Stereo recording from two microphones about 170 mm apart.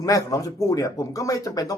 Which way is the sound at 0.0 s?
20° left (ahead or behind).